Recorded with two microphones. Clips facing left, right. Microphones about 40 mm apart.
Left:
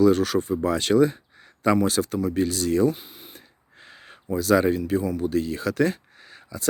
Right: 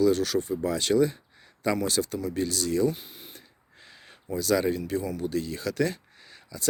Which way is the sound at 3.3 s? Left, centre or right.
Left.